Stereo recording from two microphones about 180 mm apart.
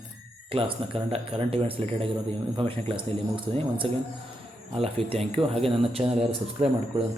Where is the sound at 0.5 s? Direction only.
35° right (ahead or behind).